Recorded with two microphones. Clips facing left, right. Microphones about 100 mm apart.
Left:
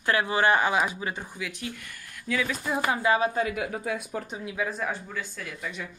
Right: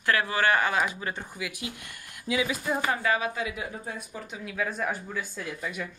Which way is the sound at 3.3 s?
45° left (ahead or behind).